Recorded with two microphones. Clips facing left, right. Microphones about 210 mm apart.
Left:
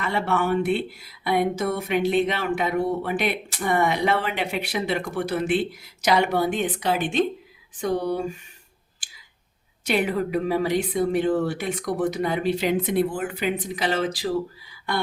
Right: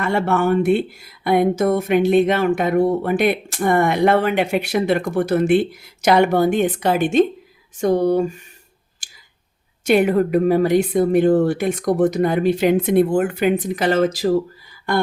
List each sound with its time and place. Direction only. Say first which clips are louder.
0.0 s speech: right 6 dB; 50° right (ahead or behind)
9.8 s speech: right 8 dB; 50° right (ahead or behind)